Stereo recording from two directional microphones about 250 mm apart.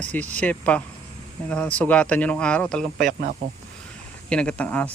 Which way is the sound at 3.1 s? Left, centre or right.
Right.